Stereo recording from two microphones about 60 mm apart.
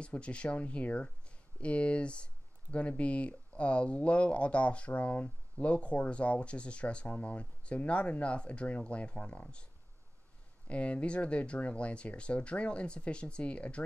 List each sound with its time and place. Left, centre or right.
0.0 s speech: centre
10.7 s speech: left